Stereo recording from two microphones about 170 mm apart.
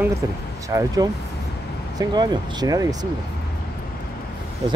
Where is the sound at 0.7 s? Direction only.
20° right (ahead or behind).